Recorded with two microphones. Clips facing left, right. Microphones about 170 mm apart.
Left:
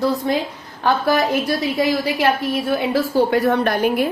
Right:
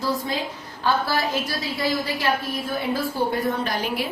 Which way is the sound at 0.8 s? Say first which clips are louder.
Left 5 dB; 60° left (ahead or behind).